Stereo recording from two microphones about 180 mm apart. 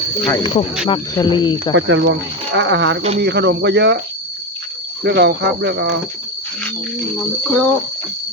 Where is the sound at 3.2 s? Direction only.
65° right (ahead or behind).